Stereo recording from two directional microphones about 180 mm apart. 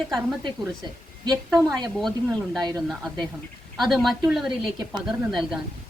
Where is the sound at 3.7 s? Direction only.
Centre (ahead or behind).